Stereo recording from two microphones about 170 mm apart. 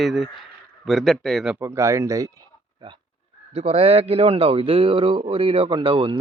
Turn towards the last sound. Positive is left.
turn(degrees=-30)  # may be behind; listen again after turning